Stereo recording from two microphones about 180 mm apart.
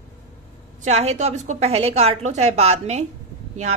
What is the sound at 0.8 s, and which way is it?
A woman's voice, 40° right (ahead or behind).